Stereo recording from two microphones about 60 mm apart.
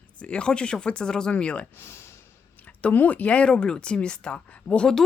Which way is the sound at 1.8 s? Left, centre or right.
Left.